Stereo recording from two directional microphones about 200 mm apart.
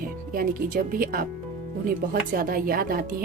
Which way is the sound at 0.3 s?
45° right (ahead or behind).